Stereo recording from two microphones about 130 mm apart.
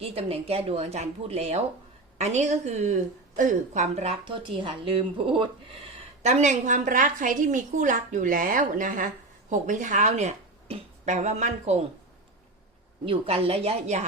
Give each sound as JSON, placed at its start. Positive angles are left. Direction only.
{"t": 0.0, "sound": "a woman's voice", "side_deg": -45}
{"t": 4.3, "sound": "speech", "side_deg": -40}
{"t": 6.2, "sound": "a woman's voice", "side_deg": -65}
{"t": 9.5, "sound": "speech", "side_deg": -75}
{"t": 13.1, "sound": "speech", "side_deg": -45}